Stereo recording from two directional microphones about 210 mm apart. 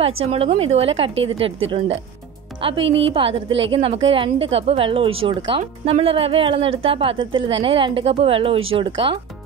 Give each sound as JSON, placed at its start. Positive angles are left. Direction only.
{"t": 0.3, "sound": "speech", "side_deg": -30}